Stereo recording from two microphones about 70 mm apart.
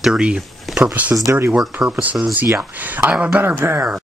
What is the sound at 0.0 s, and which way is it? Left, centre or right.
Speech, centre.